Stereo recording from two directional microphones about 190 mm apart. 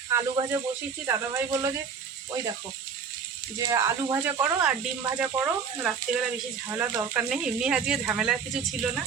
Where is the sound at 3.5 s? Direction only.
15° right (ahead or behind).